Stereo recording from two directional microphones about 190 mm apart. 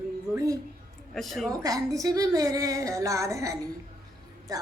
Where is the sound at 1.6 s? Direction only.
20° right (ahead or behind).